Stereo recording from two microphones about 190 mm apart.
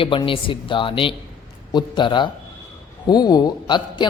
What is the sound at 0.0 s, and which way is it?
A man's voice, 25° left (ahead or behind).